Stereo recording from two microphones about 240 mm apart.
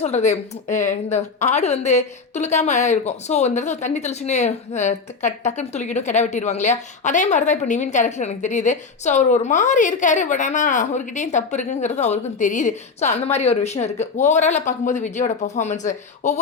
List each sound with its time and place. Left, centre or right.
0.0 s speech: left